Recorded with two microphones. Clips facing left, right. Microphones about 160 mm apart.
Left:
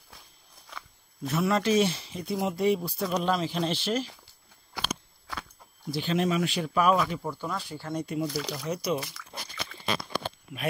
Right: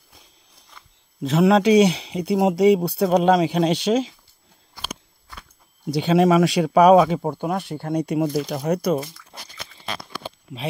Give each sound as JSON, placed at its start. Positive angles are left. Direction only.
{"t": 0.7, "sound": "walk", "side_deg": 85}
{"t": 1.2, "sound": "speech", "side_deg": -85}
{"t": 4.7, "sound": "a sound", "side_deg": 90}
{"t": 5.9, "sound": "speech", "side_deg": -85}
{"t": 7.2, "sound": "speech", "side_deg": -55}
{"t": 8.5, "sound": "speech", "side_deg": -65}